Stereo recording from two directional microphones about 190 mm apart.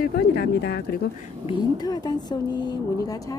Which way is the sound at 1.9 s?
20° left (ahead or behind).